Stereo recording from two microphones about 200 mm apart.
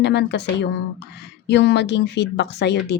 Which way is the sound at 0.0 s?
60° left (ahead or behind).